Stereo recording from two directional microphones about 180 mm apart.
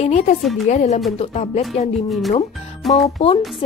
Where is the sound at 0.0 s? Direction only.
40° left (ahead or behind).